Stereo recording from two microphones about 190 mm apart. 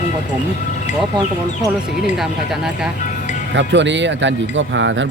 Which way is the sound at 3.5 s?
70° right (ahead or behind).